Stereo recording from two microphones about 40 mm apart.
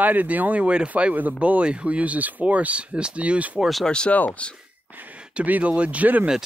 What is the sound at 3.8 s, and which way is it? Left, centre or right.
Speech, left.